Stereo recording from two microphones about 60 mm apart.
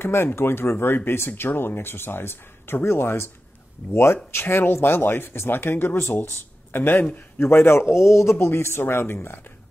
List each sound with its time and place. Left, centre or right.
0.0 s speech: left